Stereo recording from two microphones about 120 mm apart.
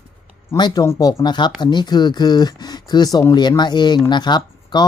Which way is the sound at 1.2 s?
40° left (ahead or behind).